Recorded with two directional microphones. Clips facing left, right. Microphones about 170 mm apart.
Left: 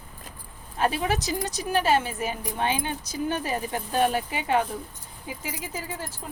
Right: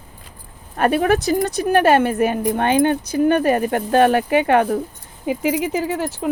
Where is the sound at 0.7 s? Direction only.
60° right (ahead or behind).